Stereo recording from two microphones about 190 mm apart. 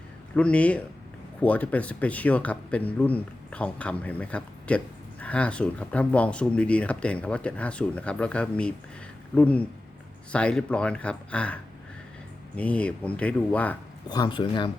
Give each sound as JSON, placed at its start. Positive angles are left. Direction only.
{"t": 0.3, "sound": "speech", "side_deg": 5}
{"t": 14.1, "sound": "speech", "side_deg": 25}